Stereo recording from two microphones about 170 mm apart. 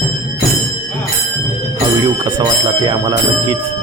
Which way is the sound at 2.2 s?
25° right (ahead or behind).